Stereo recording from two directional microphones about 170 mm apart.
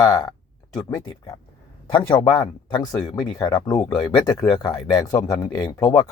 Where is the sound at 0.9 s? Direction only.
20° left (ahead or behind).